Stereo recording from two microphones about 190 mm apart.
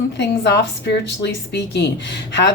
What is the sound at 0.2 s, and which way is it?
A woman's voice, 65° left (ahead or behind).